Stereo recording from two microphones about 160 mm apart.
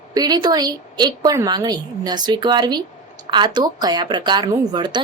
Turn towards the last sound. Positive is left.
turn(degrees=-25)  # may be behind; listen again after turning